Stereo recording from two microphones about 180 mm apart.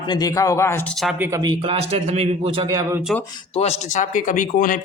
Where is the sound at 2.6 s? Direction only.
20° right (ahead or behind).